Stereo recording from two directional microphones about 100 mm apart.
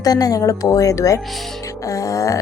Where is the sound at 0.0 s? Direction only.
40° left (ahead or behind).